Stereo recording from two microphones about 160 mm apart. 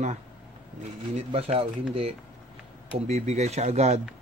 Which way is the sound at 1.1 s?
40° right (ahead or behind).